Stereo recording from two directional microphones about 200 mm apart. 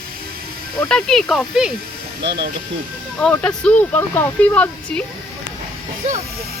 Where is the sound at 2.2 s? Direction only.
60° right (ahead or behind).